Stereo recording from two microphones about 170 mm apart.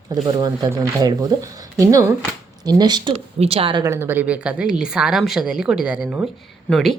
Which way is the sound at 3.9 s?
15° right (ahead or behind).